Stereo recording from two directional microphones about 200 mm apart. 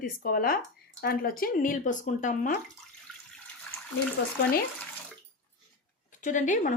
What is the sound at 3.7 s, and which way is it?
Bathtub, 10° left (ahead or behind).